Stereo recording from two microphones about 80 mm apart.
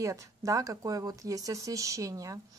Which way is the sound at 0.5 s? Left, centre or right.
Right.